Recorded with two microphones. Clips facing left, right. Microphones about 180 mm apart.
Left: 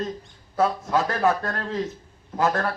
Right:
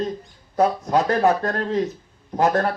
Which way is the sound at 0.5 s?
20° right (ahead or behind).